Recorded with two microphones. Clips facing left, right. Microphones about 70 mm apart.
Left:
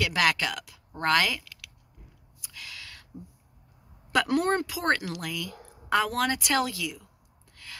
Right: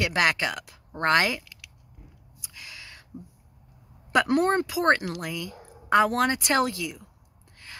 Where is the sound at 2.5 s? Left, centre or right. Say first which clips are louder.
Left 1 dB; right.